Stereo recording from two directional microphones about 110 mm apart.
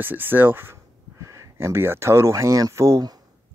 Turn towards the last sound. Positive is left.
turn(degrees=-30)  # may be behind; listen again after turning